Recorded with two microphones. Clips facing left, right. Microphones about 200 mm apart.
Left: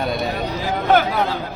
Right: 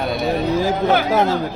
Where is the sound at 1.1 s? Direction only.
45° right (ahead or behind).